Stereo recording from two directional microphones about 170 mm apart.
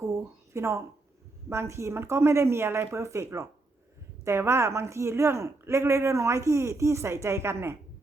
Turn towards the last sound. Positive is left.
turn(degrees=-15)  # may be behind; listen again after turning